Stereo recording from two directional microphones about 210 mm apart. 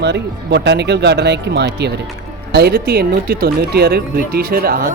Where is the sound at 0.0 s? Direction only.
55° right (ahead or behind).